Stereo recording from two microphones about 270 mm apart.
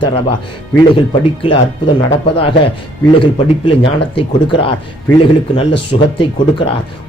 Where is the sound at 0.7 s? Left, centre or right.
Centre.